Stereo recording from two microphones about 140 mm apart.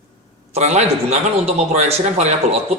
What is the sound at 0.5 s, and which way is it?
Speech, 55° right (ahead or behind).